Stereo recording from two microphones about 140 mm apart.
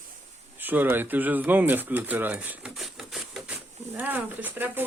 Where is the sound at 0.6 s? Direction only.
15° right (ahead or behind).